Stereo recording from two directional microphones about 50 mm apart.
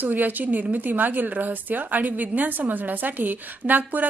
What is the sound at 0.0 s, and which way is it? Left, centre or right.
A woman's voice, right.